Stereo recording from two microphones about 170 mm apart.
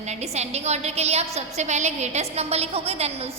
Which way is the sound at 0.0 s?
40° right (ahead or behind).